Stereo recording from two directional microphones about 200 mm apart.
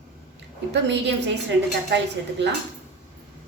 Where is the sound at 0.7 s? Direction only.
60° right (ahead or behind).